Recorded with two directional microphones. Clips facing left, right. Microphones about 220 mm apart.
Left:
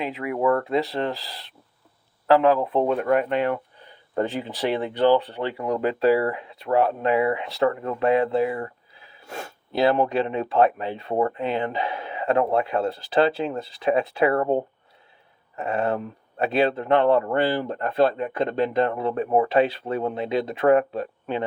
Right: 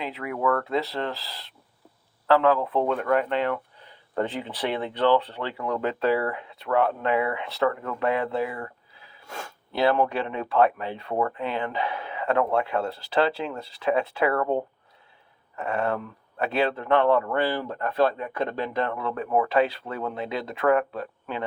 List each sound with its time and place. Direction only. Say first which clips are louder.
0.0 s speech: left 4 dB; 15° left (ahead or behind)
4.2 s speech: left 3 dB; 35° left (ahead or behind)
5.4 s speech: left 4 dB; 25° left (ahead or behind)
6.7 s speech: left 3 dB; 35° left (ahead or behind)